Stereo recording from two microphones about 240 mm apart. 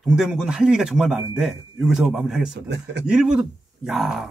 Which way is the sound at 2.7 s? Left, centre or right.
Right.